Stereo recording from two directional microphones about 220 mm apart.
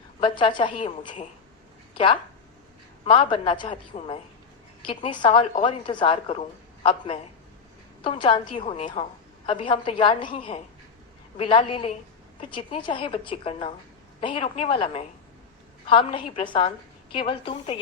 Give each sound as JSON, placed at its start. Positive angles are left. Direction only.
{"t": 0.2, "sound": "a woman's voice", "side_deg": 25}
{"t": 3.0, "sound": "a woman's voice", "side_deg": 25}
{"t": 8.0, "sound": "a woman's voice", "side_deg": 20}